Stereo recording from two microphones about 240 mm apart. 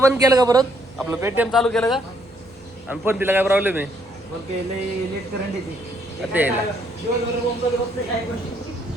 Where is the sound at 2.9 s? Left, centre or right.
Centre.